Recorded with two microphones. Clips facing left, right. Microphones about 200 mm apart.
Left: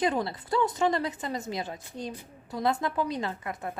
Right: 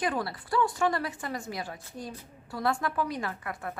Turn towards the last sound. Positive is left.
turn(degrees=20)  # may be behind; listen again after turning